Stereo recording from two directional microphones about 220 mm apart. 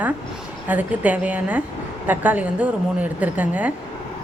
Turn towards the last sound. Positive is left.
turn(degrees=-5)  # may be behind; listen again after turning